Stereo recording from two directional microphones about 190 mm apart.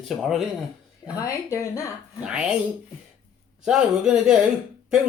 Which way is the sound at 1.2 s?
15° left (ahead or behind).